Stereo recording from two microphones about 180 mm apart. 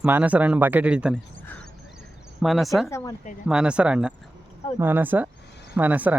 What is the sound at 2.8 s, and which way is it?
Speech, 15° left (ahead or behind).